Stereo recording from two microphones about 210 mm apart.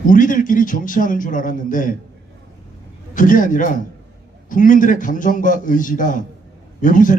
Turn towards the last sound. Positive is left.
turn(degrees=40)  # may be behind; listen again after turning